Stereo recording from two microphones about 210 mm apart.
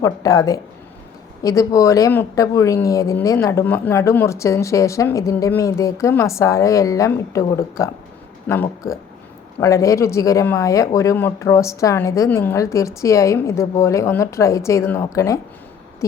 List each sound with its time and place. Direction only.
0.0 s a woman's voice: 15° left (ahead or behind)